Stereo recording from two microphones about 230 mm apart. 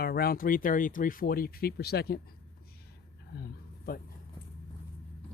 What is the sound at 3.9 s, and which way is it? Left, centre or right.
Speech, left.